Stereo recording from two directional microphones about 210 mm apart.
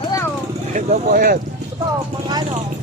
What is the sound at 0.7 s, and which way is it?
Speech, 40° right (ahead or behind).